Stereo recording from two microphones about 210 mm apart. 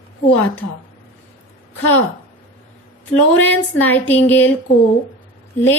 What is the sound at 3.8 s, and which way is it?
Speech, 10° left (ahead or behind).